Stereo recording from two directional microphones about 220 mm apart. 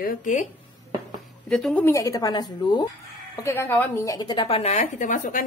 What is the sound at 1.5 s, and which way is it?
A woman's voice, 5° left (ahead or behind).